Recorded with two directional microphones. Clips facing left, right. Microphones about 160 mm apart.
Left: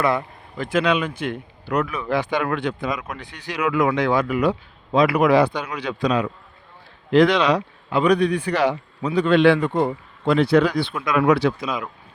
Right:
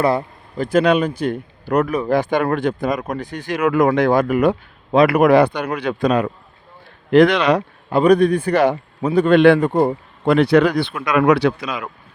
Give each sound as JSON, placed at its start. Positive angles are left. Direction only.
{"t": 0.0, "sound": "speech", "side_deg": -35}
{"t": 10.2, "sound": "speech", "side_deg": -65}